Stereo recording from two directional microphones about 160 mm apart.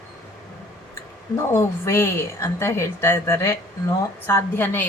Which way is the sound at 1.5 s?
15° left (ahead or behind).